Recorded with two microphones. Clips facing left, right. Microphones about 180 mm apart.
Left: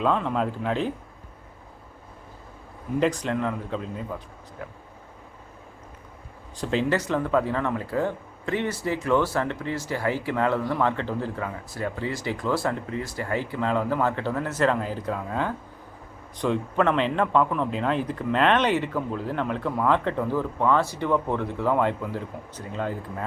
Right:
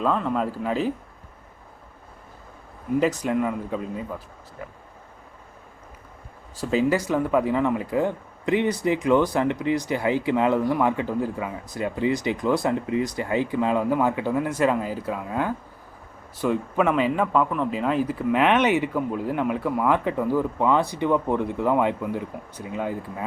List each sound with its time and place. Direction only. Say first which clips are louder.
0.0 s speech: even; centre (ahead or behind)
3.2 s speech: right 3 dB; 10° right (ahead or behind)
6.6 s speech: right 3 dB; 5° right (ahead or behind)